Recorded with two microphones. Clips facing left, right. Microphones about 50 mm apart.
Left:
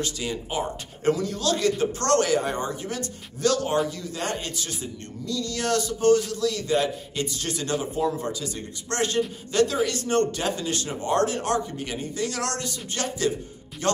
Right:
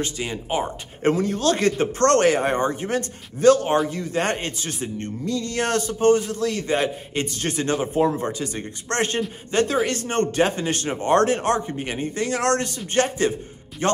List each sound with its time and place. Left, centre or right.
0.0 s speech: right